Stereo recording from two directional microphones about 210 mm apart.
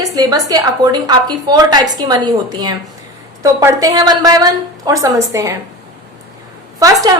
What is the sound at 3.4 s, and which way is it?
A woman's voice, 15° right (ahead or behind).